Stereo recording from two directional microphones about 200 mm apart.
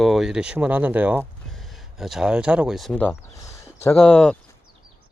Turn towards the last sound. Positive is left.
turn(degrees=5)  # may be behind; listen again after turning